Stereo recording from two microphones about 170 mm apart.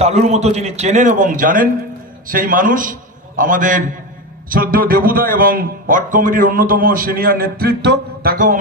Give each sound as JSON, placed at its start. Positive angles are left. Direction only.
{"t": 0.0, "sound": "a man's voice", "side_deg": -40}